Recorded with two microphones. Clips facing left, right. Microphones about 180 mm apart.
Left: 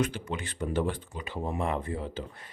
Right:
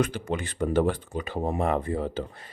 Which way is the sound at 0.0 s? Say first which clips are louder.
Right 4 dB; 45° right (ahead or behind).